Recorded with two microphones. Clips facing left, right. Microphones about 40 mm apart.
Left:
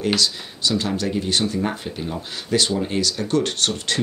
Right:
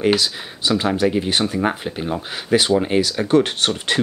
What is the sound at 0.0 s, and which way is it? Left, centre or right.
Speech, right.